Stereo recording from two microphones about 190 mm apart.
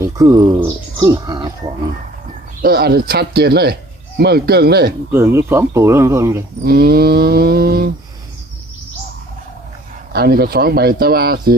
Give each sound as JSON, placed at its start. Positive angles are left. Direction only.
{"t": 0.0, "sound": "speech", "side_deg": -15}
{"t": 2.6, "sound": "speech", "side_deg": -55}
{"t": 5.1, "sound": "speech", "side_deg": -15}
{"t": 6.7, "sound": "speech", "side_deg": -55}
{"t": 10.1, "sound": "speech", "side_deg": -55}